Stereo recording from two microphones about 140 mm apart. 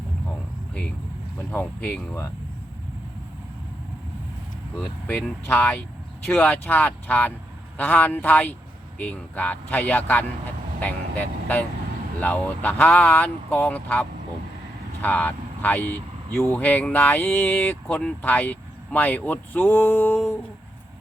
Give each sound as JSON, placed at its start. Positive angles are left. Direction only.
{"t": 1.5, "sound": "speech", "side_deg": 10}
{"t": 4.8, "sound": "speech", "side_deg": 10}